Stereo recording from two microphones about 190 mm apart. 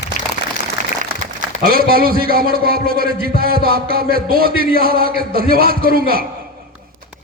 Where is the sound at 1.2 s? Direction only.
50° right (ahead or behind).